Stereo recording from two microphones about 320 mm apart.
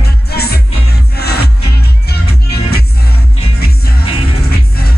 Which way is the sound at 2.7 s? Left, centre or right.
Left.